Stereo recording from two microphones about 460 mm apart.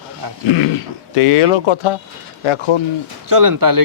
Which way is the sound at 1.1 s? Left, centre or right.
Left.